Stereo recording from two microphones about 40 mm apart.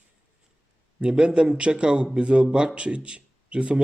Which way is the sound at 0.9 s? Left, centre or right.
Right.